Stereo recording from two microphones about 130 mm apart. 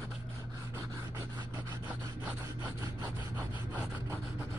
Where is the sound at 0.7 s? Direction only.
25° right (ahead or behind).